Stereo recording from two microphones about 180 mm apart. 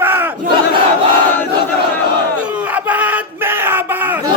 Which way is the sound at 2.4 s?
10° right (ahead or behind).